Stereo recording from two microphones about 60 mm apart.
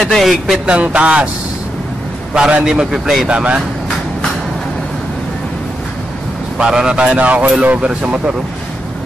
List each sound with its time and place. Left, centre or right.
0.2 s speech: centre
0.7 s speech: right
2.3 s a man's voice: centre
3.3 s speech: right
6.6 s a man's voice: centre